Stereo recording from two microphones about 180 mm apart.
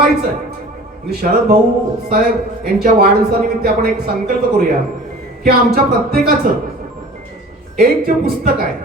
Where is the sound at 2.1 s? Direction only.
55° right (ahead or behind).